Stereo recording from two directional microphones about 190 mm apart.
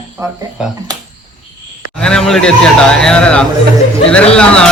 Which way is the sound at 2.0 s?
5° left (ahead or behind).